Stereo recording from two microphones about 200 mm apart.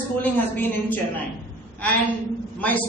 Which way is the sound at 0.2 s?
10° left (ahead or behind).